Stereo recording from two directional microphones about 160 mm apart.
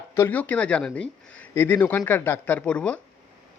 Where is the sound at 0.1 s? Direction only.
15° left (ahead or behind).